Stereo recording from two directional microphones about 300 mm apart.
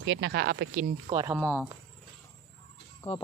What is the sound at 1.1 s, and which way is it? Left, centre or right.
Speech, centre.